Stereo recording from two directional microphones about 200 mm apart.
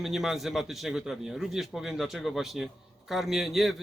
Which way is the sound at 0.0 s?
Centre (ahead or behind).